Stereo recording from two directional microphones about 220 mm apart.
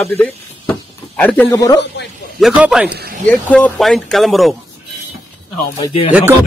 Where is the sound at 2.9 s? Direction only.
45° right (ahead or behind).